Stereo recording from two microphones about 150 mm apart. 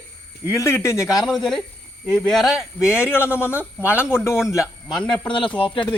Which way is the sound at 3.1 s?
15° left (ahead or behind).